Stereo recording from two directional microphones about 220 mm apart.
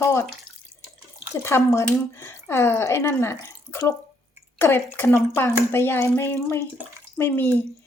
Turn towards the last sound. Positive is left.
turn(degrees=10)  # may be behind; listen again after turning